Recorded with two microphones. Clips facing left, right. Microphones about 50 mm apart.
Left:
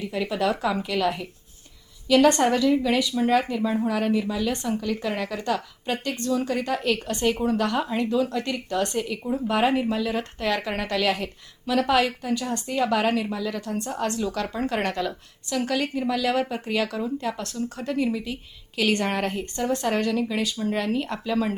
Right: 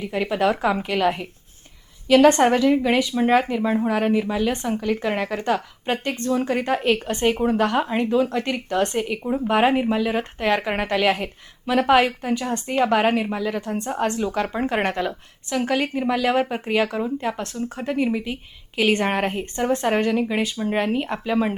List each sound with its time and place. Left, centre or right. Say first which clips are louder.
0.0 s a woman's voice: right 4 dB; right